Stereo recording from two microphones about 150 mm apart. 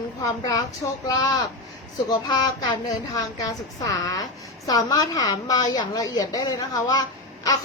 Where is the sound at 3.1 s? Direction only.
25° left (ahead or behind).